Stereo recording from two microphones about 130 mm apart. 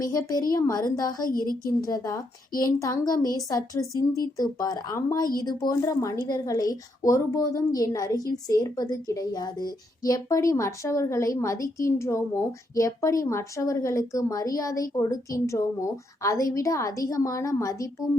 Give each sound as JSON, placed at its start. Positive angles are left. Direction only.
{"t": 0.0, "sound": "a woman's voice", "side_deg": 25}